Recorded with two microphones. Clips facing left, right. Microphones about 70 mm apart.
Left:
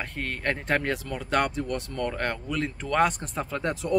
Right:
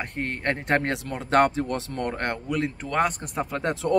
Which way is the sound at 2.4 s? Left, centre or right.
Centre.